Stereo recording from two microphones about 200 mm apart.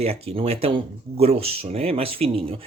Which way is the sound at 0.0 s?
30° right (ahead or behind).